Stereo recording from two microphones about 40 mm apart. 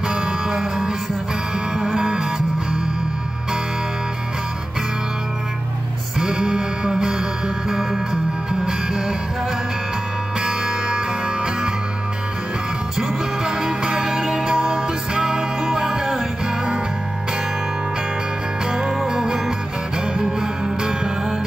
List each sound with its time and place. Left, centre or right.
0.1 s music: centre
6.1 s music: centre
10.4 s music: centre
12.9 s music: centre
18.7 s music: centre